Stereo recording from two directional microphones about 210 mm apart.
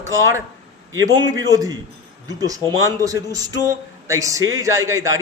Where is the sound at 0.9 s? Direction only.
20° right (ahead or behind).